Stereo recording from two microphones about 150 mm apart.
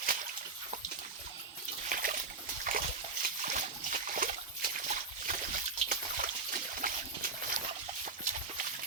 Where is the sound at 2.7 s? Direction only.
65° right (ahead or behind).